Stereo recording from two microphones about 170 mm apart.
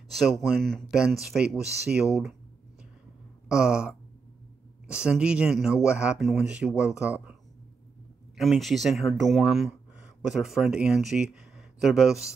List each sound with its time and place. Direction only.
0.2 s speech: centre (ahead or behind)
3.4 s a sound: 5° right (ahead or behind)
4.8 s speech: 5° right (ahead or behind)
8.4 s speech: centre (ahead or behind)